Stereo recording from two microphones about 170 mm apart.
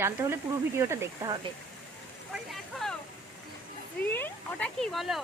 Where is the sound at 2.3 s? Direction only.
Centre (ahead or behind).